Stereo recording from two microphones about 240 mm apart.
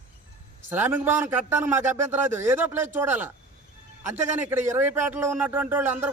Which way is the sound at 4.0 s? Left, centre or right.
Right.